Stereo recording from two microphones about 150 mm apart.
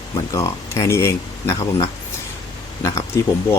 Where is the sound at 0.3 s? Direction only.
20° left (ahead or behind).